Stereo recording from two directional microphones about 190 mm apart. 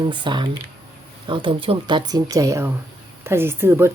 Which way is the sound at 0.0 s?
25° right (ahead or behind).